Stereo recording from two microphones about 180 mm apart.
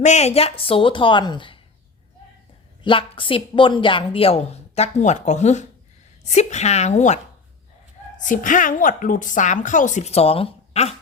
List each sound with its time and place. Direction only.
0.0 s a woman's voice: 40° left (ahead or behind)
2.8 s a woman's voice: 30° left (ahead or behind)
8.2 s a woman's voice: 45° left (ahead or behind)